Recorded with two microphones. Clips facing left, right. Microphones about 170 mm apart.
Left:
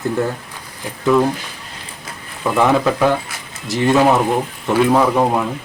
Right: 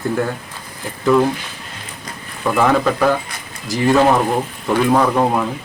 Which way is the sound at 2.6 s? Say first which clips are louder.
Even; 5° left (ahead or behind).